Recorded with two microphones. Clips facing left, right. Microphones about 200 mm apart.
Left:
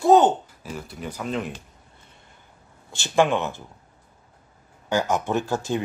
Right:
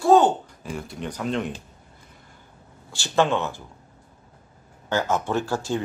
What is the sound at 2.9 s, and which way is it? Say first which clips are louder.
Speech: left 1 dB; 15° left (ahead or behind).